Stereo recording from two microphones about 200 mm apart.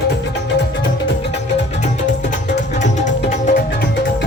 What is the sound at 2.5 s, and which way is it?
Tabla, 35° left (ahead or behind).